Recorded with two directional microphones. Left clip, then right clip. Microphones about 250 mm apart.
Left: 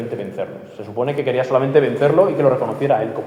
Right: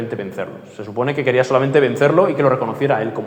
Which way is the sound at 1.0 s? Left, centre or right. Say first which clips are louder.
Right 2 dB; right.